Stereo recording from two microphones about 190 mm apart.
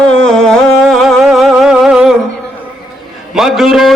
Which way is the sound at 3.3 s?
Centre (ahead or behind).